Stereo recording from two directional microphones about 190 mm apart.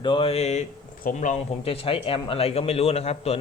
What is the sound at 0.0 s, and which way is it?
Speech, 30° left (ahead or behind).